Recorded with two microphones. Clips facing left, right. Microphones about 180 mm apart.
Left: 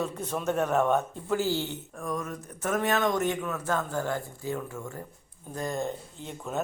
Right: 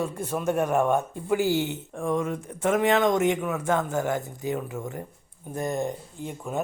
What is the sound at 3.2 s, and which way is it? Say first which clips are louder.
Speech: right 5 dB; 10° right (ahead or behind).